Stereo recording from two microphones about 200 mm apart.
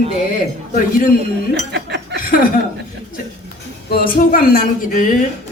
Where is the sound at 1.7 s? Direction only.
60° right (ahead or behind).